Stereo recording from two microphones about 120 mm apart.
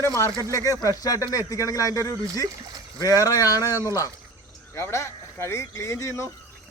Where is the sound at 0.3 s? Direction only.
25° right (ahead or behind).